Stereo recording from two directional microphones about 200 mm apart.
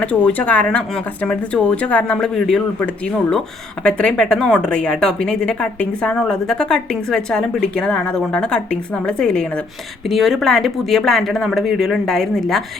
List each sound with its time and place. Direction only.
0.0 s speech: 5° left (ahead or behind)